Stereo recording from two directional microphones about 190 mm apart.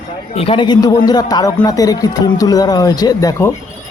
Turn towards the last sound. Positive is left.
turn(degrees=15)  # may be behind; listen again after turning